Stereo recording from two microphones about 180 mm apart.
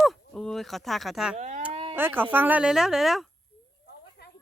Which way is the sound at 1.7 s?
30° right (ahead or behind).